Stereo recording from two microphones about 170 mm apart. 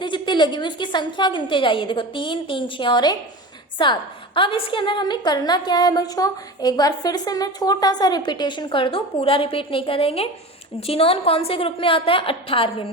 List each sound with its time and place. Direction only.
0.0 s a woman's voice: 25° left (ahead or behind)